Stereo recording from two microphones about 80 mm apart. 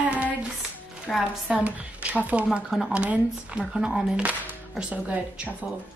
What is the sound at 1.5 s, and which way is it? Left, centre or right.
A woman's voice, centre.